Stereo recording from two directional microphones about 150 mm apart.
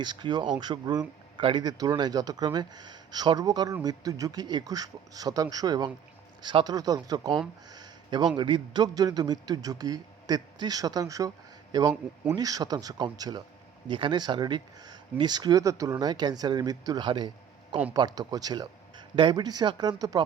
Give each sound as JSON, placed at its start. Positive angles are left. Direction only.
{"t": 0.0, "sound": "speech", "side_deg": -30}
{"t": 7.7, "sound": "a sound", "side_deg": -30}
{"t": 8.4, "sound": "speech", "side_deg": -30}